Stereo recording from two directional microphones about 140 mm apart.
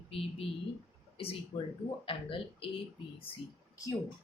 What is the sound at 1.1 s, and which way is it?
A woman's voice, 45° left (ahead or behind).